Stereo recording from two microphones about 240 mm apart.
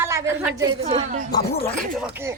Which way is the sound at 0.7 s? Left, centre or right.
Right.